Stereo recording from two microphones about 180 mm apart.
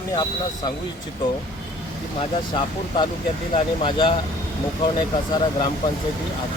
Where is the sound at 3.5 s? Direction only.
25° left (ahead or behind).